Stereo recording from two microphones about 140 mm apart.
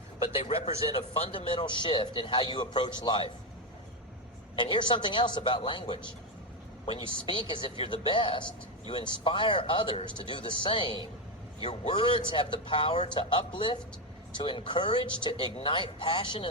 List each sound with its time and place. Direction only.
0.3 s a man's voice: 45° left (ahead or behind)
4.5 s a man's voice: 35° left (ahead or behind)
7.3 s a man's voice: 35° left (ahead or behind)